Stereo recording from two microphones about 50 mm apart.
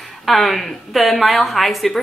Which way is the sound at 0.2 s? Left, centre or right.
Centre.